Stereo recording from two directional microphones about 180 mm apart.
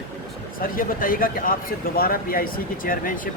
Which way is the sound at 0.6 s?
50° left (ahead or behind).